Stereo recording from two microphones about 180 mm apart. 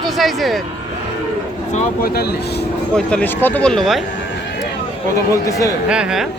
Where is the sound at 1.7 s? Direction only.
55° left (ahead or behind).